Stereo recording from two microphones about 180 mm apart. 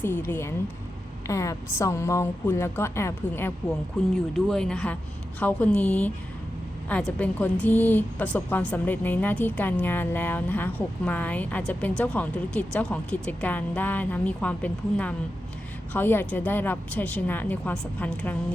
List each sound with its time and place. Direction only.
0.0 s a woman's voice: 10° left (ahead or behind)
4.0 s a woman's voice: centre (ahead or behind)